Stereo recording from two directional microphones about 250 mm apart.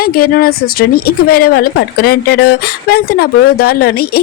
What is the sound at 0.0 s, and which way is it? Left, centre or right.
A woman's voice, left.